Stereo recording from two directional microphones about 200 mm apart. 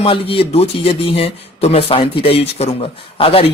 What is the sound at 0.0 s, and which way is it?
Speech, 30° left (ahead or behind).